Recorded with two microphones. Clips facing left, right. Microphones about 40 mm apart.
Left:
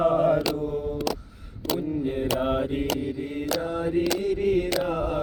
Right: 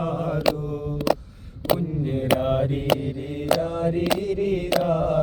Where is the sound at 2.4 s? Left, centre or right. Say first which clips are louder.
Right 2 dB; centre.